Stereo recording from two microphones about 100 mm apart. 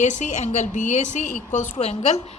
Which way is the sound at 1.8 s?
90° left.